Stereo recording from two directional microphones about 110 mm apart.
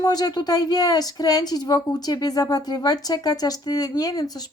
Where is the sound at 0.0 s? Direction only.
35° left (ahead or behind).